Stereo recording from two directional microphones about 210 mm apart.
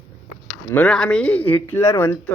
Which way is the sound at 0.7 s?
5° left (ahead or behind).